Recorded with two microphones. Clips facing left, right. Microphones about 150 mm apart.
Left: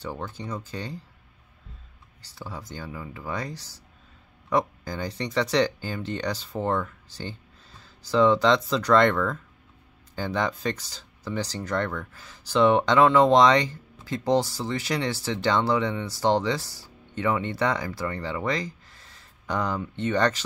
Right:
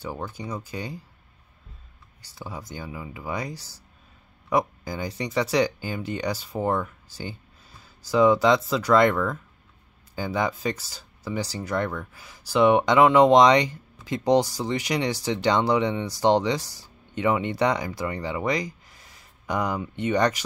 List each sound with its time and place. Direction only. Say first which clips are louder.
0.0 s speech: right 1 dB; 10° right (ahead or behind)
2.2 s speech: right 1 dB; 15° right (ahead or behind)